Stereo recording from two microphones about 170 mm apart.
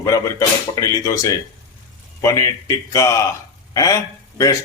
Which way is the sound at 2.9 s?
15° left (ahead or behind).